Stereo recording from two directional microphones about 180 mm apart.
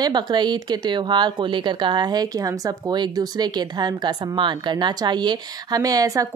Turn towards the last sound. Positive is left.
turn(degrees=-20)  # may be behind; listen again after turning